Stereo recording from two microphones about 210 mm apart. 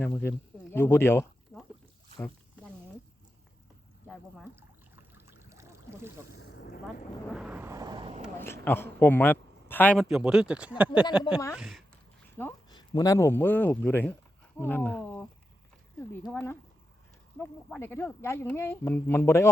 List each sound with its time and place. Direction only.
0.0 s a man's voice: 10° left (ahead or behind)
5.1 s boat: 15° right (ahead or behind)
6.3 s boat: 55° left (ahead or behind)
7.3 s a sound: 5° right (ahead or behind); by 8.2 s 25° right (ahead or behind)
8.4 s a man's voice: 10° left (ahead or behind)
12.4 s a man's voice: 15° left (ahead or behind)